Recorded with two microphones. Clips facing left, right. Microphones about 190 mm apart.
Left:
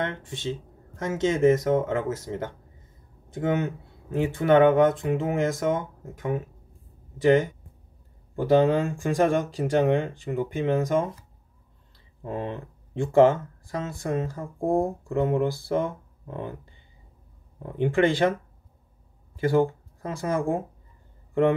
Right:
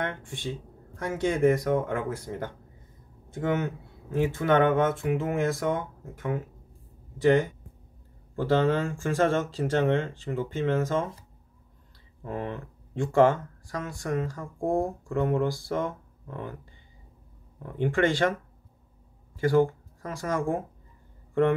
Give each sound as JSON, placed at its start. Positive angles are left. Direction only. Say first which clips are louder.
{"t": 1.0, "sound": "speech", "louder": "left 3 dB", "side_deg": 20}
{"t": 3.3, "sound": "speech", "louder": "left 2 dB", "side_deg": 20}
{"t": 12.2, "sound": "speech", "louder": "left 2 dB", "side_deg": 20}
{"t": 17.6, "sound": "speech", "louder": "left 3 dB", "side_deg": 20}
{"t": 19.3, "sound": "speech", "louder": "even", "side_deg": 20}